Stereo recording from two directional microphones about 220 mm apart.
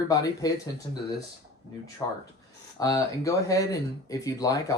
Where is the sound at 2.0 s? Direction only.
10° left (ahead or behind).